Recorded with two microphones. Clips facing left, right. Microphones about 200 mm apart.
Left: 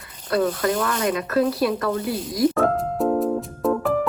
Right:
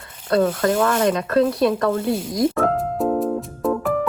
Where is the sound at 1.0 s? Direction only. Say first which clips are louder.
Right 3 dB; 25° right (ahead or behind).